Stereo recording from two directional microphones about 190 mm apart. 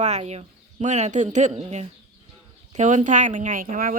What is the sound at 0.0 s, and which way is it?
Speech, 35° right (ahead or behind).